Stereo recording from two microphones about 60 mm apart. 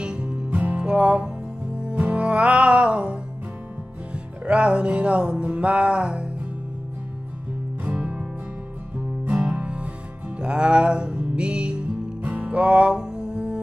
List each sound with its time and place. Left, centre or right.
0.0 s music: centre
7.8 s music: centre